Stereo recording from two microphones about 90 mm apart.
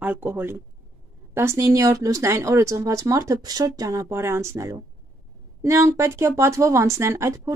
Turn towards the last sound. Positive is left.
turn(degrees=-30)  # may be behind; listen again after turning